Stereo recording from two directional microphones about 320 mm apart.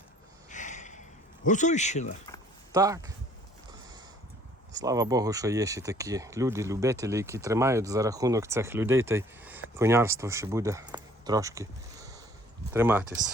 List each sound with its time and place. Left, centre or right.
0.5 s a sound: left
1.5 s speech: left
2.7 s speech: centre
4.7 s speech: centre